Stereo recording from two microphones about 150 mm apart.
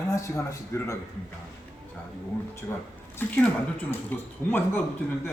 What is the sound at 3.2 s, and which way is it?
Speech, 10° left (ahead or behind).